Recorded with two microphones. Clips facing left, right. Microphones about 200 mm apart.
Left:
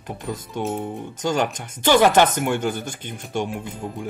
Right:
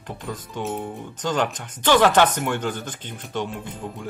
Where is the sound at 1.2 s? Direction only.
10° left (ahead or behind).